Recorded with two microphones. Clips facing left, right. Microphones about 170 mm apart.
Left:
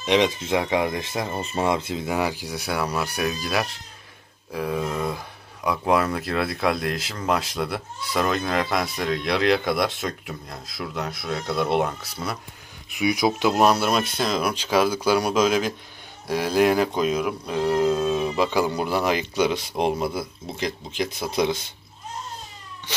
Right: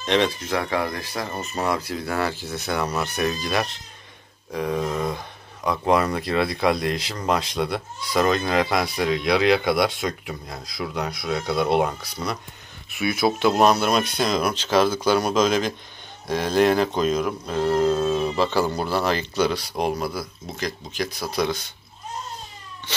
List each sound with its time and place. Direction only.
0.0 s speech: 15° left (ahead or behind)
12.9 s speech: 15° left (ahead or behind)